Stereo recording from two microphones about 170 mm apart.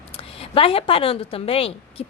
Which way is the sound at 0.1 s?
35° left (ahead or behind).